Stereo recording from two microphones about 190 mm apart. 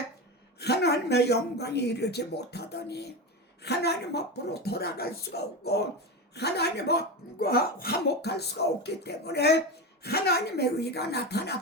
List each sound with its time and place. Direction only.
0.6 s speech: 60° left (ahead or behind)